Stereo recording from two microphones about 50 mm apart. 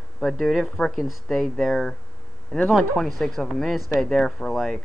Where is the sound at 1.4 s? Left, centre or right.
Centre.